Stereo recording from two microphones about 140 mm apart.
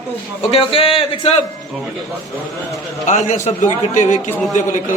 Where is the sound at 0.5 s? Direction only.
40° left (ahead or behind).